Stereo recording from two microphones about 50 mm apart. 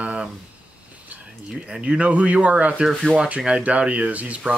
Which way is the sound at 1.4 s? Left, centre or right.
Centre.